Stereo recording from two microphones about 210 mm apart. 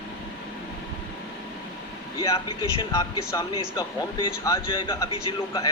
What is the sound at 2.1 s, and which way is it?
A man's voice, 20° left (ahead or behind).